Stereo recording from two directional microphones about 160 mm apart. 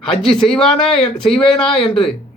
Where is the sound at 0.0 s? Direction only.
5° left (ahead or behind).